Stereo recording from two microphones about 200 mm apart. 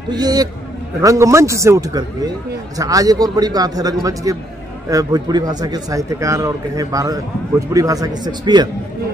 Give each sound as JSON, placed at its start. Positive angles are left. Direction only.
{"t": 0.1, "sound": "a man's voice", "side_deg": -20}